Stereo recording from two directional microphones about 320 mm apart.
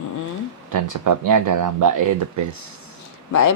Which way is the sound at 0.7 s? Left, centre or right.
Right.